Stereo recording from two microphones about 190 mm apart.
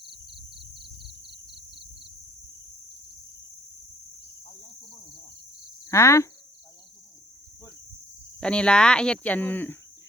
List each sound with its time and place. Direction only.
0.0 s cricket: 60° right (ahead or behind)
5.8 s speech: 15° left (ahead or behind)
8.4 s speech: 5° left (ahead or behind)